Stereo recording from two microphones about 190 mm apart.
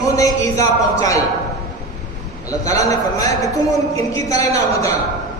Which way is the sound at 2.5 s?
20° left (ahead or behind).